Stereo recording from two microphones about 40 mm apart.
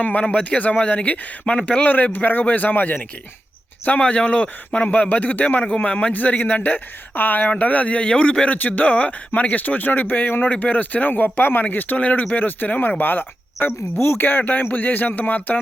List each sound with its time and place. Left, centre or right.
0.0 s a man's voice: left
2.4 s speech: left
4.0 s a man's voice: left
5.0 s speech: left
5.6 s a man's voice: left
6.1 s speech: left
7.6 s a man's voice: left
8.4 s speech: left
10.5 s speech: left
11.1 s speech: left
11.9 s a man's voice: left
12.3 s speech: left